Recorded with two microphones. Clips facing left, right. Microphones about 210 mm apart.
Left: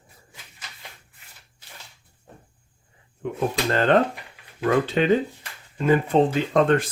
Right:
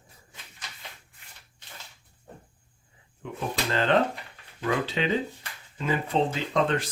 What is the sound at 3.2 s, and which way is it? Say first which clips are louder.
Speech: left 7 dB; 50° left (ahead or behind).